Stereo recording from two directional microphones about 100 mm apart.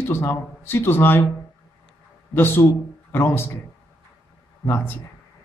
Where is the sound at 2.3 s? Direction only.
20° left (ahead or behind).